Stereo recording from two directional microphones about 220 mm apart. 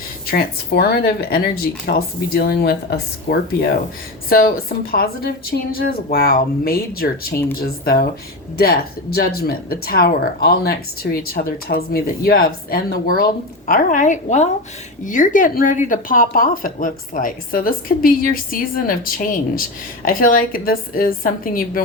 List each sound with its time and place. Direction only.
0.3 s speech: 45° left (ahead or behind)